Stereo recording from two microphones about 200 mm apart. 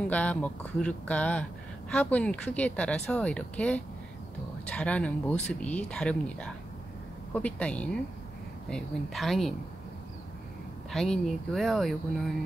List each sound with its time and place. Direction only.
0.1 s speech: 5° left (ahead or behind)
10.9 s speech: centre (ahead or behind)